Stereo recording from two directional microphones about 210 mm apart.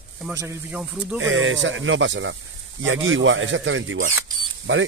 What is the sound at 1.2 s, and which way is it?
Speech, 65° right (ahead or behind).